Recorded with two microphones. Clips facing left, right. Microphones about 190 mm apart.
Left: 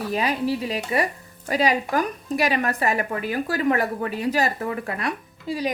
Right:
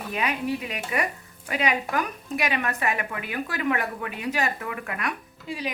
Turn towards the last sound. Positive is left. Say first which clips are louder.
# left 6 dB
turn(degrees=35)  # may be behind; listen again after turning